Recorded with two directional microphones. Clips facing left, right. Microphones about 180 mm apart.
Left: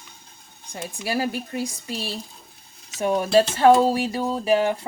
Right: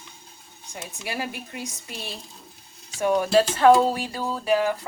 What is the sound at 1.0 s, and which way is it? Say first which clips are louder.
Speech: left 6 dB; 35° left (ahead or behind).